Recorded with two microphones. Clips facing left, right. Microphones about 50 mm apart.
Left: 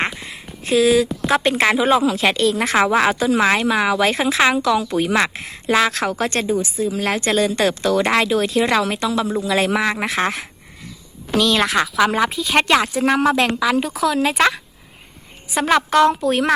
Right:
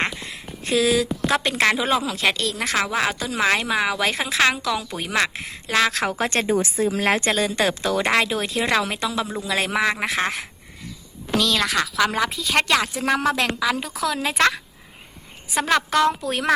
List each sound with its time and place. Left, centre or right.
0.0 s a sound: centre
1.4 s a woman's voice: centre
4.6 s speech: centre
6.1 s speech: centre
6.6 s a woman's voice: right
7.0 s speech: right
7.3 s speech: centre
8.0 s speech: centre
11.5 s a woman's voice: left; by 14.6 s centre
15.6 s a woman's voice: centre